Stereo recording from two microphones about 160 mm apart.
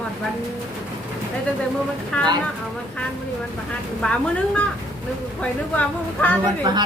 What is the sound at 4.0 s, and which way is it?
A woman's voice, 5° left (ahead or behind).